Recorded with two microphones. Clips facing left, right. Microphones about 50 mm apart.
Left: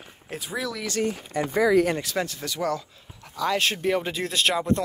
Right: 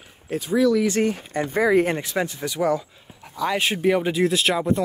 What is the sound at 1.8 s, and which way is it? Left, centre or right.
Speech, right.